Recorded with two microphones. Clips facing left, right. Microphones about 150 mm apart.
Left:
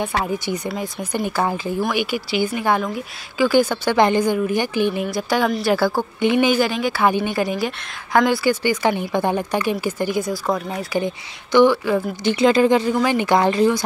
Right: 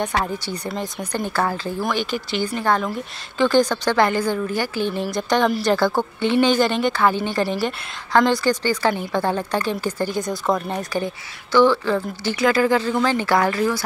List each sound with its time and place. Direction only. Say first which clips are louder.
0.0 s a woman's voice: left 1 dB; 5° left (ahead or behind)
5.0 s a woman's voice: right 1 dB; 5° left (ahead or behind); by 13.8 s 20° left (ahead or behind)